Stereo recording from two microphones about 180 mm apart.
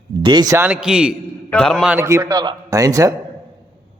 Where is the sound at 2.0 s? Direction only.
15° right (ahead or behind).